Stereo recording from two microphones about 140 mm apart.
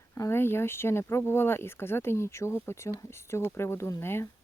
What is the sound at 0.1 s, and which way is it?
Speech, 20° left (ahead or behind).